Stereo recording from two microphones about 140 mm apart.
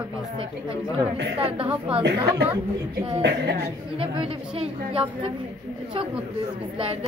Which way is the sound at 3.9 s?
40° right (ahead or behind).